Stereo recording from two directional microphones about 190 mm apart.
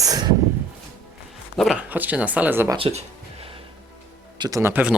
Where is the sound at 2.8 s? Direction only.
30° right (ahead or behind).